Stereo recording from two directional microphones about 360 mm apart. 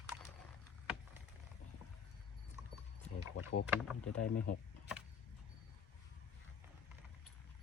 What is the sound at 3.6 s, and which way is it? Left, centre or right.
Speech, centre.